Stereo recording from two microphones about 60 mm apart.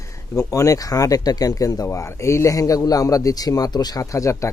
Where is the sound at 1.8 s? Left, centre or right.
Left.